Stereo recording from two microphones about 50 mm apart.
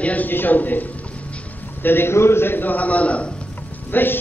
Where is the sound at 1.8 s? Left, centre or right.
Left.